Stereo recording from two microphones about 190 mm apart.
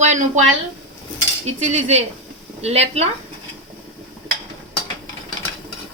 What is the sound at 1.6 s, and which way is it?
Speech, 40° right (ahead or behind).